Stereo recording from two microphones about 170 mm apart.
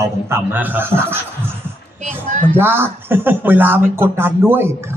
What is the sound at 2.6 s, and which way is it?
Speech, 10° right (ahead or behind).